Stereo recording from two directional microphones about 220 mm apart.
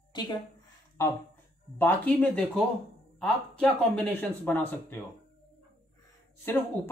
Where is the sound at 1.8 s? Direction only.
10° left (ahead or behind).